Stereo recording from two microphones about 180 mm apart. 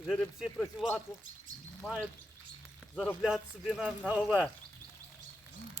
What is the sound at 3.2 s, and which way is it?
Speech, 5° right (ahead or behind).